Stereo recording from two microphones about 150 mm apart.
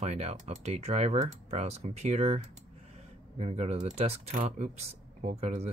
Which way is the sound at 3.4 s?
45° right (ahead or behind).